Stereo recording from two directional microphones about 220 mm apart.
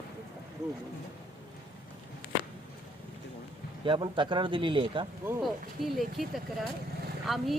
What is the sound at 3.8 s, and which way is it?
A man's voice, 20° right (ahead or behind).